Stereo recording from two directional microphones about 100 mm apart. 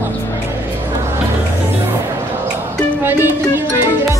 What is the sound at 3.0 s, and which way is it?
Music, 20° right (ahead or behind).